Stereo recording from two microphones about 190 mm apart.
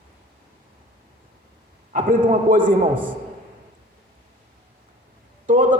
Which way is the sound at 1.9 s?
45° right (ahead or behind).